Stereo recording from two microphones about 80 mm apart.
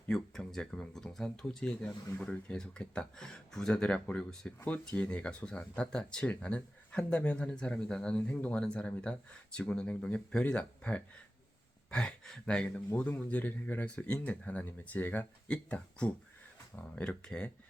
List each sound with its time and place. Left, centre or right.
0.1 s speech: centre; by 15.3 s left
15.4 s speech: centre